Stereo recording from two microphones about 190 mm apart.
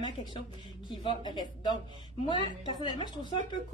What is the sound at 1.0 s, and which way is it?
A woman's voice, 25° left (ahead or behind).